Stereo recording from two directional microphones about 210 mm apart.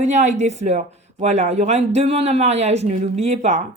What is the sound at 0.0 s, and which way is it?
Speech, 35° right (ahead or behind).